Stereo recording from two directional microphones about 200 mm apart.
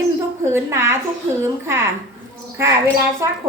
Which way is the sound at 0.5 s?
15° right (ahead or behind).